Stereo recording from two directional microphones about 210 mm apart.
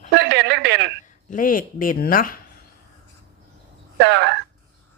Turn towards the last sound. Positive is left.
turn(degrees=-55)  # may be behind; listen again after turning